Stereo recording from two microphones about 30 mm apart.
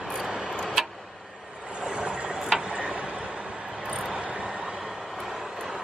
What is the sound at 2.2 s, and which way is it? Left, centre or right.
Tick-tock, right.